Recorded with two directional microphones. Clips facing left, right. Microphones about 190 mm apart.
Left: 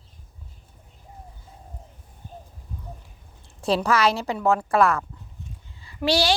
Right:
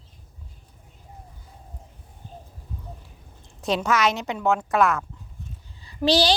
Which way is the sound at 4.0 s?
30° left (ahead or behind).